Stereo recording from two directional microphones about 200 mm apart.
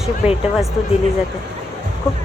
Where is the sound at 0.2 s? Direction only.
35° left (ahead or behind).